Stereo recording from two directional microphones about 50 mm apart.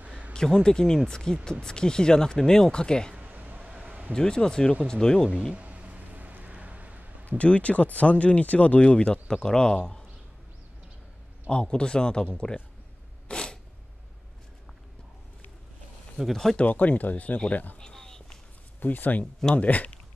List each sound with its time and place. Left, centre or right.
0.0 s a sound: right
0.3 s speech: centre
3.2 s a sound: right
4.1 s speech: centre
5.5 s a sound: right
7.3 s speech: left
11.4 s speech: centre
13.3 s sneeze: centre
16.2 s speech: centre
16.5 s speech: left
17.7 s a sound: centre
18.8 s speech: left